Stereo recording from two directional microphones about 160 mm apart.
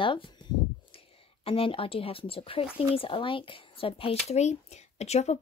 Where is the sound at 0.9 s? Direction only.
35° left (ahead or behind).